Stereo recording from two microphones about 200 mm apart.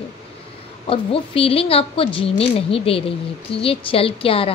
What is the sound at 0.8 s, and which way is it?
A woman's voice, 30° left (ahead or behind).